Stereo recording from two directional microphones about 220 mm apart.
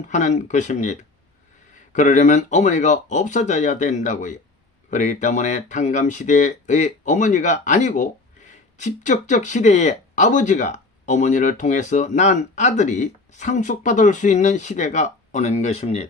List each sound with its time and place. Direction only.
0.1 s speech: 35° left (ahead or behind)